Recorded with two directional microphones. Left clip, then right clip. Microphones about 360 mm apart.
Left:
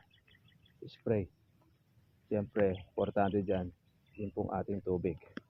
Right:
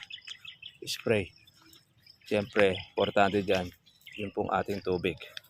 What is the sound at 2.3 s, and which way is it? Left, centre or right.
Speech, centre.